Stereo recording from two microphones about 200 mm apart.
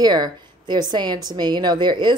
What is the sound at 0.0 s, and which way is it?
A woman's voice, 20° right (ahead or behind).